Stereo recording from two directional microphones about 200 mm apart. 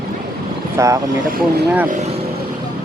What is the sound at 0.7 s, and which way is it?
Speech, 15° right (ahead or behind).